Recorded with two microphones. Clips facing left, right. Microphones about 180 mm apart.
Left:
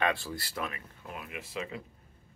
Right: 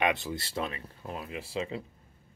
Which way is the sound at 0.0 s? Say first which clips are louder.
Right 2 dB; 20° right (ahead or behind).